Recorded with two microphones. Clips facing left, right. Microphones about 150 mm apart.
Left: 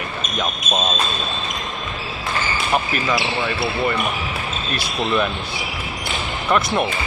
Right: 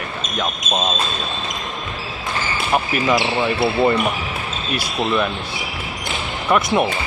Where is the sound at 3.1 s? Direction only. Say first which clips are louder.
Right 4 dB; 20° right (ahead or behind).